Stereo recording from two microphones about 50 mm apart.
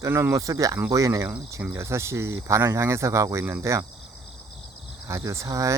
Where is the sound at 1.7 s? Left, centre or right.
Right.